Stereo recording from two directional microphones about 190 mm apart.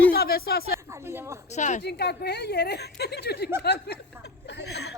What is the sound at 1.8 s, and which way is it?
A woman's voice, 60° left (ahead or behind).